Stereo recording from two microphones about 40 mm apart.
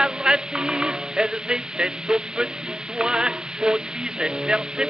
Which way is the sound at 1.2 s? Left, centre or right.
Right.